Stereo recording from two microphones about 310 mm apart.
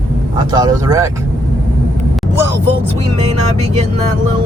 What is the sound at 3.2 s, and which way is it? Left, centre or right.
Vehicle, right.